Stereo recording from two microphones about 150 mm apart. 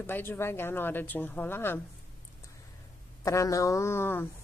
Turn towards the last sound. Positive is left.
turn(degrees=15)  # may be behind; listen again after turning